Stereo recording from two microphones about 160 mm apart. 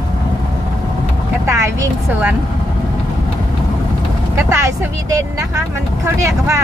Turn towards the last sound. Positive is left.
turn(degrees=-20)  # may be behind; listen again after turning